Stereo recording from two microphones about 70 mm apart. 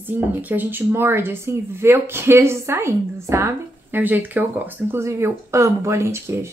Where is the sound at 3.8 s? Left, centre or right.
Right.